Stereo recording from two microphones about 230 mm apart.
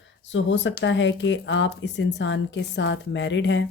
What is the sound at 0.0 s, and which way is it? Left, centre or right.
Speech, left.